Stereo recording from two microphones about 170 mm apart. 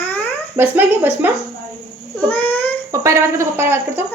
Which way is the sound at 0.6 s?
10° right (ahead or behind).